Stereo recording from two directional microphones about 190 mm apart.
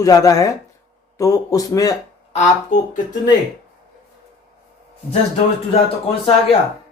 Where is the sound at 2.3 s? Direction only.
40° left (ahead or behind).